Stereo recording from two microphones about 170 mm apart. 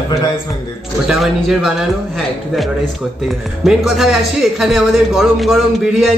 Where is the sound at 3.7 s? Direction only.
Centre (ahead or behind).